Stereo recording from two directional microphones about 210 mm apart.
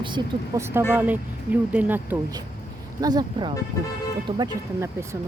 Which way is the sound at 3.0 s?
20° right (ahead or behind).